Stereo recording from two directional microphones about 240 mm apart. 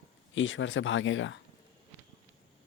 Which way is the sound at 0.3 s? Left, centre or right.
Left.